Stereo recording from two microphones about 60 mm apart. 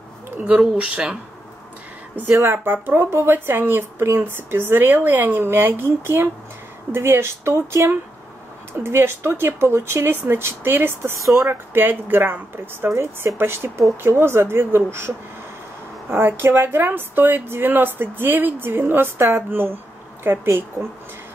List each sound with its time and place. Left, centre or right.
0.4 s speech: right
2.3 s speech: right
2.6 s speech: right
8.8 s speech: right
20.2 s speech: right